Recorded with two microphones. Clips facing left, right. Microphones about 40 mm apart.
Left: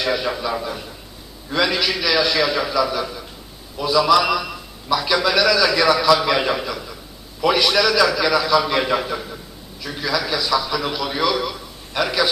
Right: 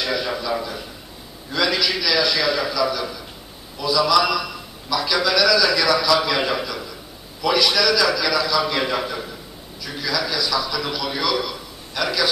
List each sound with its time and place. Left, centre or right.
0.0 s a man's voice: centre